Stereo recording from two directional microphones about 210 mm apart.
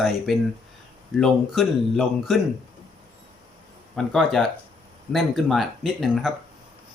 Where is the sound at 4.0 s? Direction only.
Centre (ahead or behind).